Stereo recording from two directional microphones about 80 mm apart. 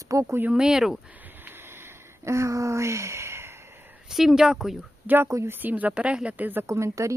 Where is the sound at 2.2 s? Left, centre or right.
Right.